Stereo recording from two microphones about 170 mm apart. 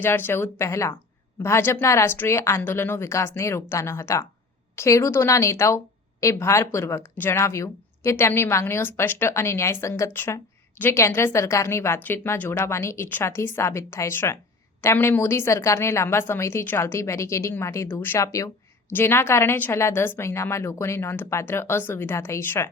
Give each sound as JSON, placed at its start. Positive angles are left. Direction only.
{"t": 0.0, "sound": "a woman's voice", "side_deg": 15}